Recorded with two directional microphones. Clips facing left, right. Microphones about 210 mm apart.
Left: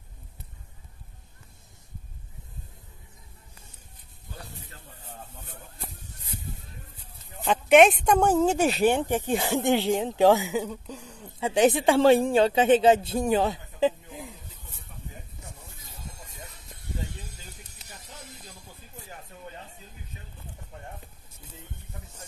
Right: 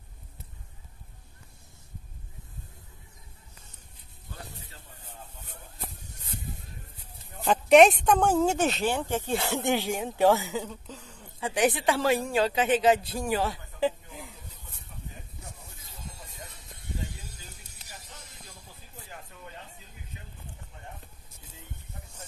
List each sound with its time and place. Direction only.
7.4 s a woman's voice: centre (ahead or behind)
8.7 s speech: 15° left (ahead or behind)